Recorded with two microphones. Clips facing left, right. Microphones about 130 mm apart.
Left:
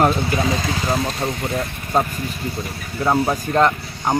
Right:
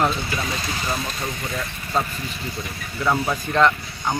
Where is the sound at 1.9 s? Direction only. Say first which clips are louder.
Left 5 dB; 45° left (ahead or behind).